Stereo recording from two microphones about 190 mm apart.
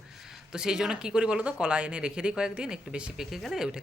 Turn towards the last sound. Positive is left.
turn(degrees=-5)  # may be behind; listen again after turning